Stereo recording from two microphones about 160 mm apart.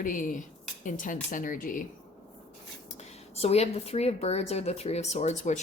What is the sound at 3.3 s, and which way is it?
A woman's voice, 40° left (ahead or behind).